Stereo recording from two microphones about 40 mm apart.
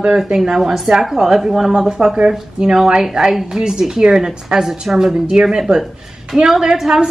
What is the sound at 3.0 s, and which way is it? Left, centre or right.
A woman's voice, centre.